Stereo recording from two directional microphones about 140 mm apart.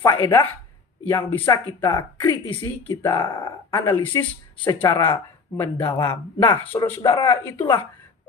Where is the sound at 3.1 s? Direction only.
35° left (ahead or behind).